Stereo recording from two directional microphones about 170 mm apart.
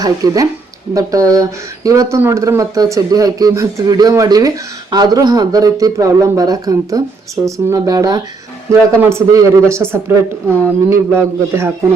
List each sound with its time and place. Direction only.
0.0 s speech: 20° right (ahead or behind)